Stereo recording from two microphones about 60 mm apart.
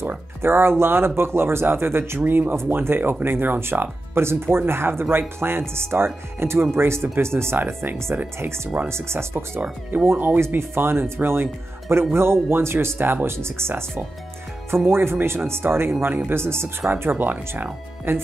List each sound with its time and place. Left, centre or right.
0.4 s speech: right
9.6 s speech: right